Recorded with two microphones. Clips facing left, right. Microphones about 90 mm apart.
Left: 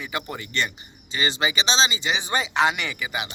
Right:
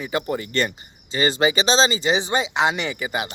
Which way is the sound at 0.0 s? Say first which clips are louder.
Right 6 dB; 30° right (ahead or behind).